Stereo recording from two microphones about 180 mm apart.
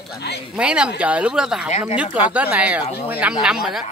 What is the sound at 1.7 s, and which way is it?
Speech, 40° left (ahead or behind).